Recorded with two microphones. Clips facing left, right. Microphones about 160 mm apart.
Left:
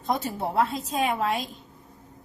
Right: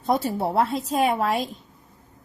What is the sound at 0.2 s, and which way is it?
A woman's voice, 40° right (ahead or behind).